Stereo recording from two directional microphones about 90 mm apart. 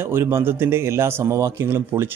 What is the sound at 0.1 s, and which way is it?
Speech, 30° right (ahead or behind).